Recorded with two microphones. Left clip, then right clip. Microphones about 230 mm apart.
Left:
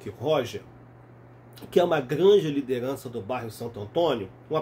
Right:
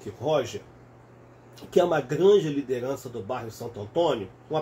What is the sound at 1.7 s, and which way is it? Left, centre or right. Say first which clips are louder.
Speech: even; left.